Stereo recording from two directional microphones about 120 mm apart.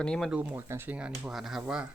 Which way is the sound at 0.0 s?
5° left (ahead or behind).